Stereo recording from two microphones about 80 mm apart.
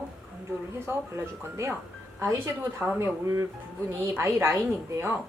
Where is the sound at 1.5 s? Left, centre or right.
Right.